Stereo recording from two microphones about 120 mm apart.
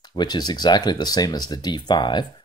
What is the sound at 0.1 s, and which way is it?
Speech, 35° left (ahead or behind).